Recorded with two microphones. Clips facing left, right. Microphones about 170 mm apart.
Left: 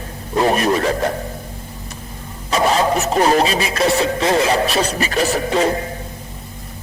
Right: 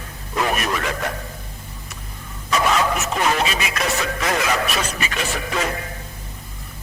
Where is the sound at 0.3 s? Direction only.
30° left (ahead or behind).